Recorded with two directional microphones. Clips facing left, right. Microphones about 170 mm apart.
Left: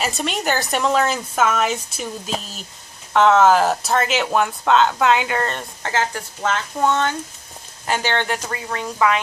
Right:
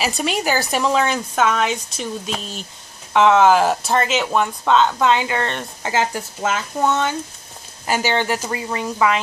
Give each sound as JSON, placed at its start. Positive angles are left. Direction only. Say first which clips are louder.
{"t": 0.0, "sound": "speech", "louder": "right 2 dB", "side_deg": -5}
{"t": 5.8, "sound": "speech", "louder": "right 3 dB", "side_deg": -10}